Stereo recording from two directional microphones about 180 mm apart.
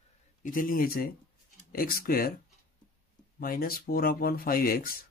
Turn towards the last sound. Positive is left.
turn(degrees=55)  # may be behind; listen again after turning